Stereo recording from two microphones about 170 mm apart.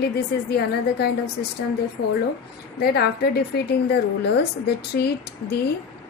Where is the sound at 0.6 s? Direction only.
70° left (ahead or behind).